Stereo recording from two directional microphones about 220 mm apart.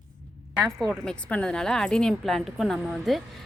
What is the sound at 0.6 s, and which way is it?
Speech, centre (ahead or behind).